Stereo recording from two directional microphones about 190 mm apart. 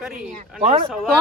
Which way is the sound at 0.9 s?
Centre (ahead or behind).